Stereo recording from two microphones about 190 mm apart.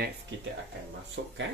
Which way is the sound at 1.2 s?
60° right (ahead or behind).